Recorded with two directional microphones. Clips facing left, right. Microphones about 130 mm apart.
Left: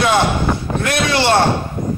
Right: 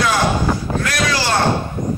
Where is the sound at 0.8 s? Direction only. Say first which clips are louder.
Left 4 dB; 25° left (ahead or behind).